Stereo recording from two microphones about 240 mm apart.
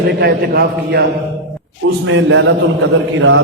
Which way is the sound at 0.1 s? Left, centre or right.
Right.